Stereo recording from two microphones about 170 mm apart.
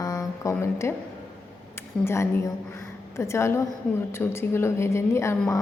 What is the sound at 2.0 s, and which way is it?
A woman's voice, 15° left (ahead or behind).